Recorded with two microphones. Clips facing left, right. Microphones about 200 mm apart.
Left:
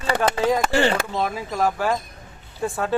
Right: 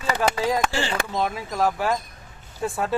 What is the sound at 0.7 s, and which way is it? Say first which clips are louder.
Speech: left 8 dB; 60° left (ahead or behind).